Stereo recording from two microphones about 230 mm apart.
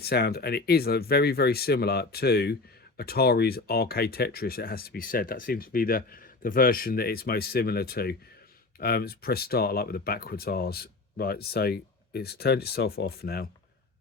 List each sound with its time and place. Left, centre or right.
0.0 s speech: left